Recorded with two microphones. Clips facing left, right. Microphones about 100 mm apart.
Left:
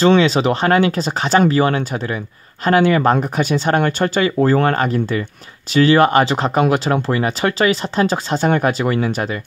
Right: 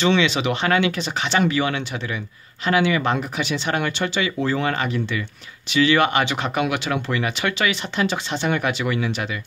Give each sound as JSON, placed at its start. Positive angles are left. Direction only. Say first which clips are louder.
{"t": 0.0, "sound": "speech", "louder": "left 6 dB", "side_deg": 40}